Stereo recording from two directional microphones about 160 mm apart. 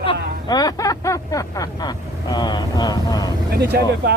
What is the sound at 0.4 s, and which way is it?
Vehicle, 25° left (ahead or behind).